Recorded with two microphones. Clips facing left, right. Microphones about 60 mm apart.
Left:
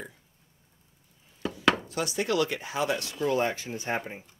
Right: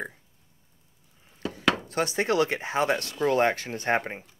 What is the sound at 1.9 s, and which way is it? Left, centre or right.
Speech, right.